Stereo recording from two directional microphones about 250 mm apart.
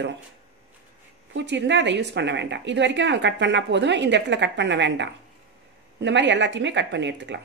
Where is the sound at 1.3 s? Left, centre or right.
Right.